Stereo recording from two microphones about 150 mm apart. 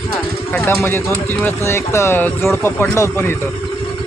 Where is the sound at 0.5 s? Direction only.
10° left (ahead or behind).